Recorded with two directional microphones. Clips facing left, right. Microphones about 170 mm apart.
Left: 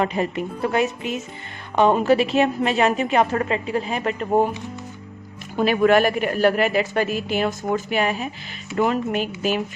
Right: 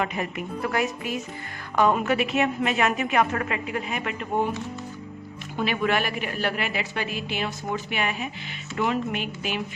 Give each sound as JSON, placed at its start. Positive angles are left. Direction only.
{"t": 0.0, "sound": "a woman's voice", "side_deg": 30}
{"t": 5.5, "sound": "a woman's voice", "side_deg": 45}